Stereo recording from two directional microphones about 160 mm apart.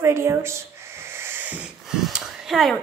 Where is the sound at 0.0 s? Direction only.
15° right (ahead or behind).